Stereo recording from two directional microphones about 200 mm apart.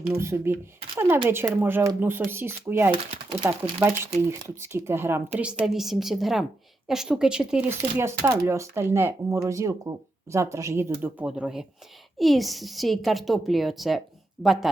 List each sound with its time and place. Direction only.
0.1 s speech: 15° right (ahead or behind)
2.9 s speech: 25° right (ahead or behind)
3.8 s a woman's voice: 10° right (ahead or behind)